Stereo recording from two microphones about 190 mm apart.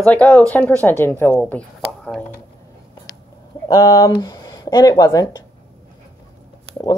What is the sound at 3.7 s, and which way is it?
Speech, 20° left (ahead or behind).